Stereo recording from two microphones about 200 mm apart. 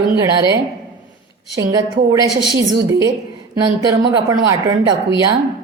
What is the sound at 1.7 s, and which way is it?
A woman's voice, 20° right (ahead or behind).